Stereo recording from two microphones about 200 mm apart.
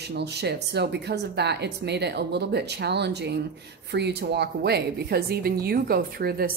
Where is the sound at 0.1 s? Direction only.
55° right (ahead or behind).